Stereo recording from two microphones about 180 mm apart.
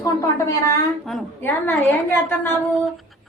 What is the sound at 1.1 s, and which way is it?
A woman's voice, 5° left (ahead or behind).